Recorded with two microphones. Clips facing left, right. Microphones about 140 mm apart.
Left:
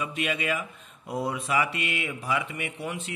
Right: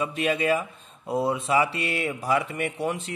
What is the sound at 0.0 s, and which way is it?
A man's voice, 35° right (ahead or behind).